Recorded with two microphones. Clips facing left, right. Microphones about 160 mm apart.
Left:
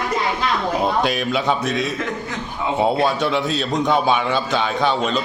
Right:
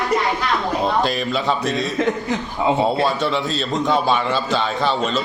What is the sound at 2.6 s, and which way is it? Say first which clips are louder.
Speech: right 5 dB; 30° right (ahead or behind).